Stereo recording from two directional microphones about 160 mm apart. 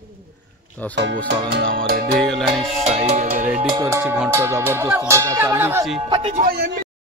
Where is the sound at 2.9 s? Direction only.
40° right (ahead or behind).